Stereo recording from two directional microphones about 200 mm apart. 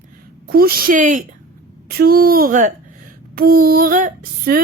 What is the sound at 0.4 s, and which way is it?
Female singing, 50° right (ahead or behind).